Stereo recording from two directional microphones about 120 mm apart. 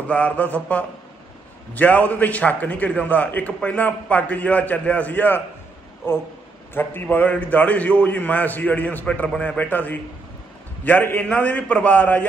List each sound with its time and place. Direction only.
0.1 s a man's voice: 10° left (ahead or behind)